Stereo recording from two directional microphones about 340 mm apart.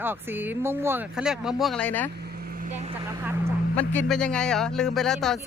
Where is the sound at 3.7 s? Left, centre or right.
Centre.